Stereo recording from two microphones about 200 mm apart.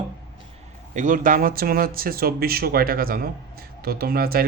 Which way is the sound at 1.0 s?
40° right (ahead or behind).